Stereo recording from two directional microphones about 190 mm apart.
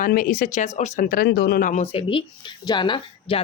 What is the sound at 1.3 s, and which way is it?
Speech, 55° left (ahead or behind).